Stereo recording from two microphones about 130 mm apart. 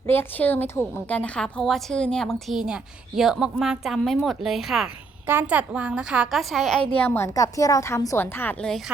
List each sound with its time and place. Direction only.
0.1 s a woman's voice: 15° left (ahead or behind); by 4.9 s centre (ahead or behind)
5.2 s a woman's voice: 15° right (ahead or behind); by 7.3 s 15° left (ahead or behind)
7.3 s a woman's voice: 25° left (ahead or behind)